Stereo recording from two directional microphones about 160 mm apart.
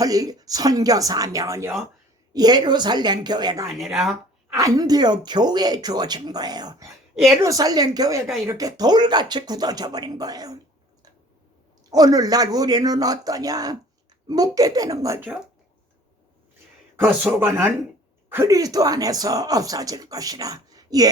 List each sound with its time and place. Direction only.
0.0 s speech: 20° right (ahead or behind)
3.8 s speech: centre (ahead or behind)
4.4 s speech: 20° right (ahead or behind)
11.9 s speech: 25° right (ahead or behind)
17.3 s speech: 10° right (ahead or behind)